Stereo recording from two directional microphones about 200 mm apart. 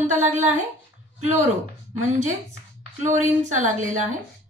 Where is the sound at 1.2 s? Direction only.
35° right (ahead or behind).